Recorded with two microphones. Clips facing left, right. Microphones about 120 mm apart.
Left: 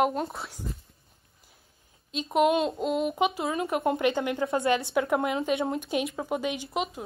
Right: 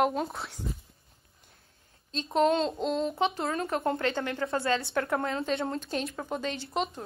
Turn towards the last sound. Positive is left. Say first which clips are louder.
# left 1 dB
turn(degrees=5)  # may be behind; listen again after turning